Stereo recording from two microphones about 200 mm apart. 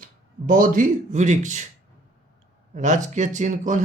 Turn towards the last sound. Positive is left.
turn(degrees=-40)  # may be behind; listen again after turning